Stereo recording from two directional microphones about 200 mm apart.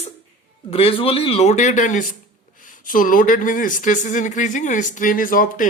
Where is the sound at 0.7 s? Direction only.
30° left (ahead or behind).